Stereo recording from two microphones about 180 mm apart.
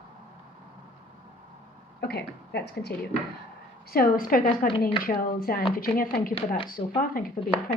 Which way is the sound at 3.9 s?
55° left (ahead or behind).